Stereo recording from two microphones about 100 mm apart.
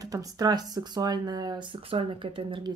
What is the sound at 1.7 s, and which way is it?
Speech, 60° right (ahead or behind).